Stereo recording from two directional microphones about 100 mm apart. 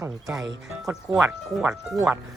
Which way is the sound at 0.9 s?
30° right (ahead or behind).